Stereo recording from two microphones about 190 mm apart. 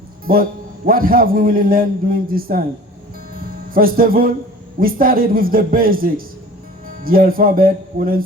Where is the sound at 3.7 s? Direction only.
50° right (ahead or behind).